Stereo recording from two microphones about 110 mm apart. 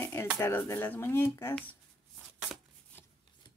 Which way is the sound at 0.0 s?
20° left (ahead or behind).